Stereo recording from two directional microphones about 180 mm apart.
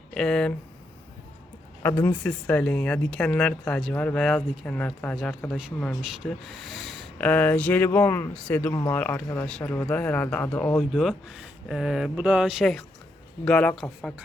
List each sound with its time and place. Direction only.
0.1 s speech: 5° left (ahead or behind)
1.8 s speech: 15° left (ahead or behind)